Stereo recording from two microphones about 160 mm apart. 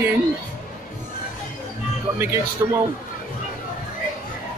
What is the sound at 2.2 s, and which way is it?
Speech, 15° right (ahead or behind).